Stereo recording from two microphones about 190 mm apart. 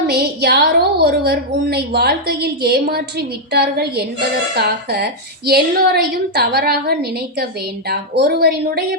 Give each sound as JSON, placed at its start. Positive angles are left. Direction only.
{"t": 0.1, "sound": "a woman's voice", "side_deg": -55}